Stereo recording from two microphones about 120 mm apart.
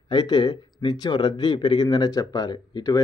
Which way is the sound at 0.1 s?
35° left (ahead or behind).